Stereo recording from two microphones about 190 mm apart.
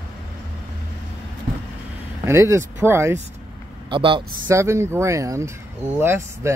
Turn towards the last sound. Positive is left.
turn(degrees=-15)  # may be behind; listen again after turning